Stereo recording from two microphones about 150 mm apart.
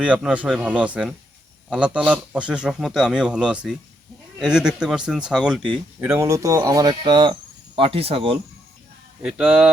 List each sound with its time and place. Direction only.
0.0 s a man's voice: 5° right (ahead or behind)
6.0 s speech: 20° right (ahead or behind); by 8.4 s 40° right (ahead or behind)
9.2 s speech: 10° right (ahead or behind)